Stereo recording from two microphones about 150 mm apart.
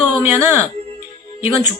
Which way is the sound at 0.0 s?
10° right (ahead or behind).